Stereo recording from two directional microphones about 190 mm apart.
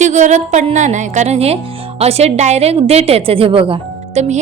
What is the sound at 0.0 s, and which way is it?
A woman's voice, 40° right (ahead or behind).